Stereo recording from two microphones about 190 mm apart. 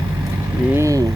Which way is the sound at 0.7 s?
15° right (ahead or behind).